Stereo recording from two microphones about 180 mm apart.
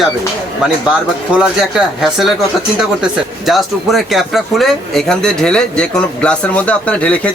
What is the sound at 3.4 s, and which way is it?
Speech, centre (ahead or behind).